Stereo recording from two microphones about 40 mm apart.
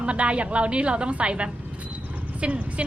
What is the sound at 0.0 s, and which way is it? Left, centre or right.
A woman's voice, right.